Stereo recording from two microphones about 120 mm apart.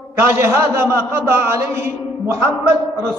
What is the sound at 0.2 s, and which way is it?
A man's voice, 20° right (ahead or behind).